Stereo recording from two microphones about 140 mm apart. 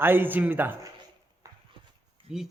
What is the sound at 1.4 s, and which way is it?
Horse, 25° right (ahead or behind).